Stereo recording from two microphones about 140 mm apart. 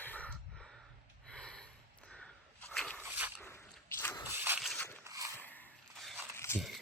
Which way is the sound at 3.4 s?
15° left (ahead or behind).